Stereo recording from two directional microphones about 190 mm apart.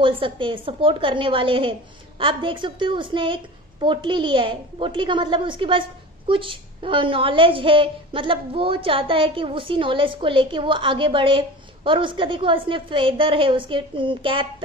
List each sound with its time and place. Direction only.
0.0 s a woman's voice: 25° right (ahead or behind)